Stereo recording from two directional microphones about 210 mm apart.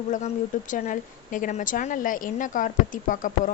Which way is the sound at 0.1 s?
35° left (ahead or behind).